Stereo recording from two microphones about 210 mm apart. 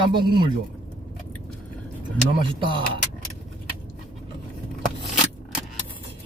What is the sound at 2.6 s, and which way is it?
Speech, 25° right (ahead or behind).